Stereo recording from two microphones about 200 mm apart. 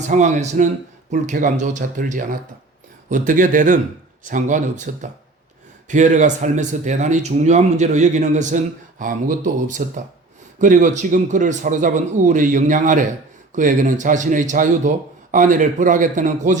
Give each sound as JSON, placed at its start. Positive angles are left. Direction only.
{"t": 0.1, "sound": "a man's voice", "side_deg": -35}